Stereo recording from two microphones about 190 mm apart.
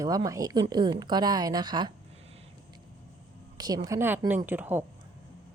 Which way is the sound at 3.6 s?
20° right (ahead or behind).